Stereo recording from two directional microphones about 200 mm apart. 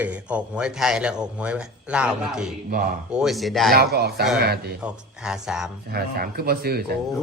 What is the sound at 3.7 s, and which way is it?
Speech, 50° right (ahead or behind).